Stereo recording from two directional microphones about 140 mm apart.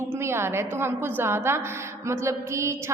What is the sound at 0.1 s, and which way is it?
A woman's voice, 20° right (ahead or behind).